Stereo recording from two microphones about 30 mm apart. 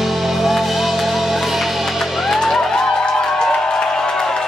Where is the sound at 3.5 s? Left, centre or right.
Left.